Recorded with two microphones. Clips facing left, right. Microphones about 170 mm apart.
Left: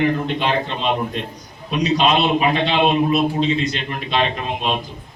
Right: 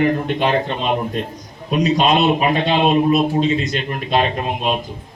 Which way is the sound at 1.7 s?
45° right (ahead or behind).